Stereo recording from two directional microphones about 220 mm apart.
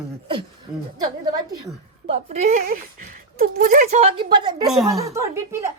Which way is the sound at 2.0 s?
30° right (ahead or behind).